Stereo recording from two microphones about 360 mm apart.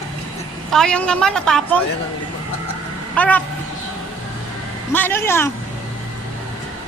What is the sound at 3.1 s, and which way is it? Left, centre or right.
Speech, centre.